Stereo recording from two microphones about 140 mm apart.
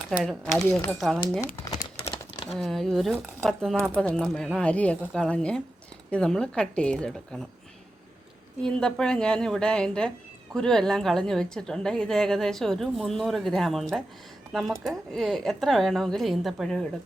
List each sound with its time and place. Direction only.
0.2 s a woman's voice: centre (ahead or behind)
2.5 s a woman's voice: centre (ahead or behind)
8.6 s a woman's voice: 5° left (ahead or behind)